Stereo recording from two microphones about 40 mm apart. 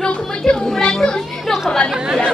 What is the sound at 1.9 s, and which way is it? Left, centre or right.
Speech, centre.